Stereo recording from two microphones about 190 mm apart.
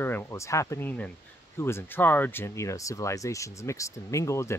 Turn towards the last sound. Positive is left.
turn(degrees=15)  # may be behind; listen again after turning